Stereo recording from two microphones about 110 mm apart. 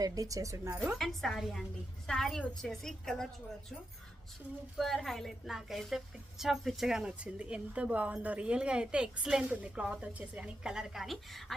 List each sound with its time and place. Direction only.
0.0 s speech: 35° right (ahead or behind)
0.9 s a woman's voice: 5° left (ahead or behind)
4.8 s a woman's voice: centre (ahead or behind)